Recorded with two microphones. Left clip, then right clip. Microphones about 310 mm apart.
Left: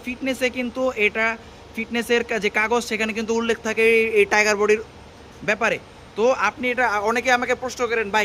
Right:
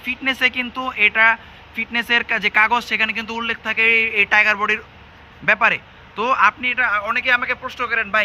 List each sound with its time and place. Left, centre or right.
0.0 s speech: centre